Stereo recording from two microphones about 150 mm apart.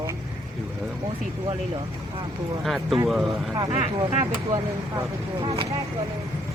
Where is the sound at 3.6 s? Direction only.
40° right (ahead or behind).